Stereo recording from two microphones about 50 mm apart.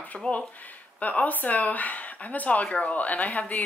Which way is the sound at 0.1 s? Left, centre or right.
Centre.